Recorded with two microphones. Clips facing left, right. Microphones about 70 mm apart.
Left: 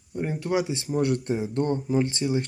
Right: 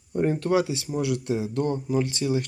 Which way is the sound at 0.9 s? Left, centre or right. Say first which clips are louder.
Left 2 dB; left.